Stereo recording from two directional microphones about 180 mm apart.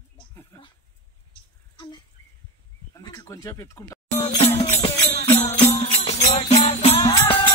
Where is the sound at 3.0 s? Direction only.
20° left (ahead or behind).